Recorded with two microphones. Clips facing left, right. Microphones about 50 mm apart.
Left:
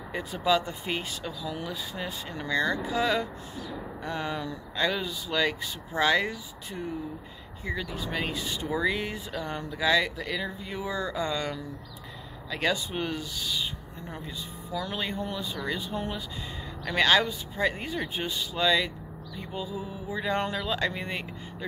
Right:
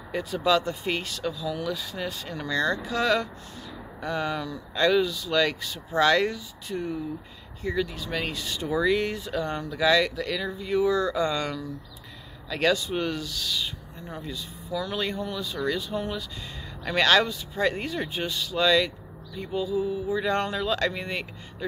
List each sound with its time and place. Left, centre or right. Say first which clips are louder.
0.1 s speech: right 2 dB; centre
14.0 s speech: right 3 dB; centre
16.9 s speech: right 2 dB; centre